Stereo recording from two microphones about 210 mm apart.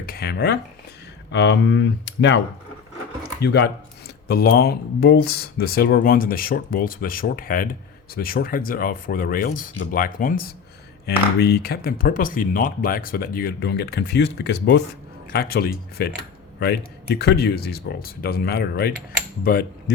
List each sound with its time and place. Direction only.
0.0 s speech: 45° left (ahead or behind)
3.4 s speech: 55° left (ahead or behind)